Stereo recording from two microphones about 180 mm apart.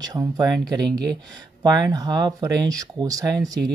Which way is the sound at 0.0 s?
20° right (ahead or behind).